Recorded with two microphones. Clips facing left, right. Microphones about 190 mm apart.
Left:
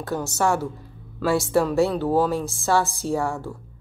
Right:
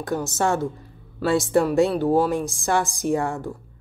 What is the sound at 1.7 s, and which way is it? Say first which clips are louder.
Speech: right 2 dB; 15° right (ahead or behind).